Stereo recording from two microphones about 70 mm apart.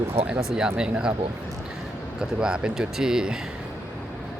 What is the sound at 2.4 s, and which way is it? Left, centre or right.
Speech, centre.